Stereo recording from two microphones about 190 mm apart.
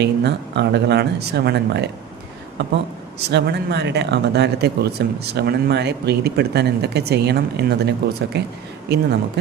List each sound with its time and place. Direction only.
0.0 s speech: 65° right (ahead or behind)
3.2 s speech: 60° right (ahead or behind)